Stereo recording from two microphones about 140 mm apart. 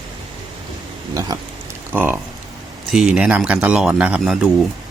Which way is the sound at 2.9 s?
5° right (ahead or behind).